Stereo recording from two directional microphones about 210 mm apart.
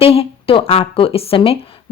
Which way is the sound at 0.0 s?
25° left (ahead or behind).